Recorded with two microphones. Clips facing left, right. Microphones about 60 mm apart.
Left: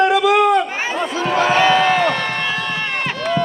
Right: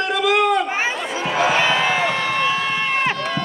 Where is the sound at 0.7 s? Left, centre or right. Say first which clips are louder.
Left 1 dB; centre.